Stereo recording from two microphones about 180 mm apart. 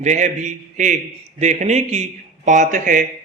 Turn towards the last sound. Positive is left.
turn(degrees=-45)  # may be behind; listen again after turning